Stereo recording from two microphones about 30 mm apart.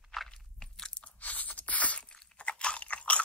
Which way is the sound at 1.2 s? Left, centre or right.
Left.